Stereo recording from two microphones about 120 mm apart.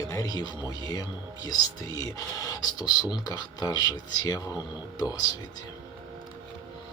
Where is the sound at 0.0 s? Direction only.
30° left (ahead or behind).